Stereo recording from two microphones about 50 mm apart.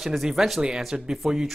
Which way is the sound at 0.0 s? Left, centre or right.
Centre.